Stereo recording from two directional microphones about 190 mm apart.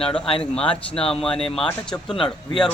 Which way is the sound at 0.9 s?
5° left (ahead or behind).